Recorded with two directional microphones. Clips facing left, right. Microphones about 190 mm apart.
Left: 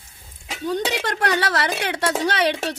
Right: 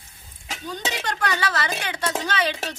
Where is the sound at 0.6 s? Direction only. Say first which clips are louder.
Left 7 dB; 65° left (ahead or behind).